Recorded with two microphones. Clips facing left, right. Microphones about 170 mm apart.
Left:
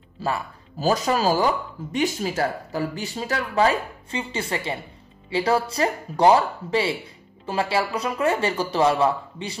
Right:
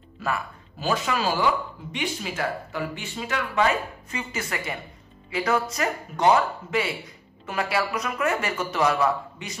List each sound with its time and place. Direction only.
0.2 s speech: 35° left (ahead or behind)